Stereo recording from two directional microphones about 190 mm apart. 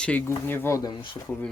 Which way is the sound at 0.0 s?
10° left (ahead or behind).